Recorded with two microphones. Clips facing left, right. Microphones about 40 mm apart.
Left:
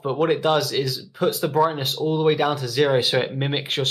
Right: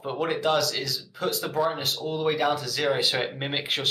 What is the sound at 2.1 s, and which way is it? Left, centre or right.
Speech, left.